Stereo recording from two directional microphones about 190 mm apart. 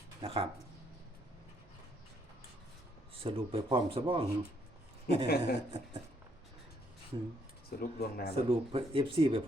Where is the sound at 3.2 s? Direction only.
30° right (ahead or behind).